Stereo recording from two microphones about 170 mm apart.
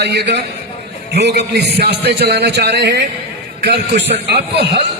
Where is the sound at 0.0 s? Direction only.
80° right.